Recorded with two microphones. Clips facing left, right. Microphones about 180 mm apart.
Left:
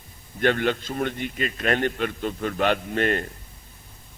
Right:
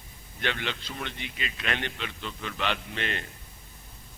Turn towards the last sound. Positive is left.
turn(degrees=45)  # may be behind; listen again after turning